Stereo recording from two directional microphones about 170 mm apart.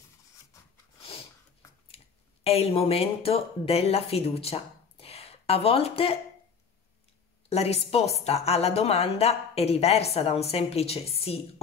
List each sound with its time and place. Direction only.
2.4 s speech: 35° left (ahead or behind)
7.4 s a woman's voice: 35° left (ahead or behind)